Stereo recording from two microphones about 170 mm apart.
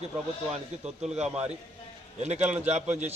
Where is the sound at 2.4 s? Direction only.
10° right (ahead or behind).